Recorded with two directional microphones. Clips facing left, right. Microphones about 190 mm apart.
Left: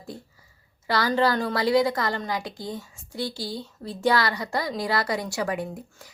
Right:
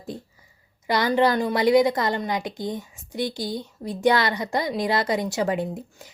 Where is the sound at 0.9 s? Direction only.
20° right (ahead or behind).